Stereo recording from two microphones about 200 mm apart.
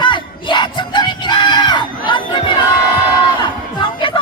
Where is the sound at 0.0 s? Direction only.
25° left (ahead or behind).